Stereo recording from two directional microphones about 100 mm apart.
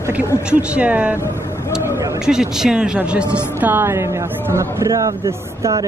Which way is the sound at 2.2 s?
5° right (ahead or behind).